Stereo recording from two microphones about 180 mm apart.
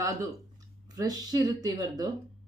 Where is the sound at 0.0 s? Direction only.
20° right (ahead or behind).